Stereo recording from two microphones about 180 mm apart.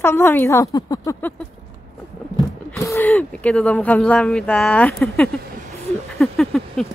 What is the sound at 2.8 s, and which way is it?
Speech, 10° left (ahead or behind).